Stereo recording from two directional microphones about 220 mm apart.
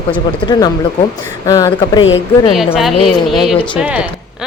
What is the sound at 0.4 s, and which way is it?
Speech, 20° left (ahead or behind).